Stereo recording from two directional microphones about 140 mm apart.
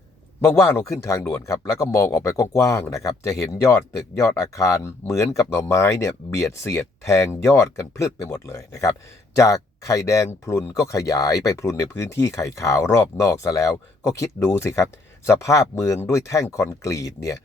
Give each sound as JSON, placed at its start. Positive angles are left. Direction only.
{"t": 0.4, "sound": "speech", "side_deg": 15}